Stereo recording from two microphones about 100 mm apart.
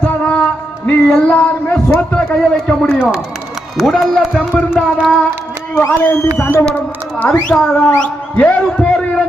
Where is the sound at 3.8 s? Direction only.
5° right (ahead or behind).